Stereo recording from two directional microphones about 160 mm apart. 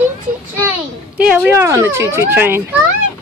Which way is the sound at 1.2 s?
10° right (ahead or behind).